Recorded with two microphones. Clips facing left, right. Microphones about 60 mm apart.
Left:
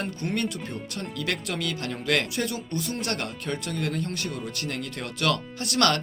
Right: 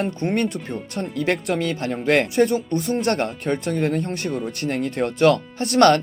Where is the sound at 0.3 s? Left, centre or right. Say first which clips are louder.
Right 6 dB; right.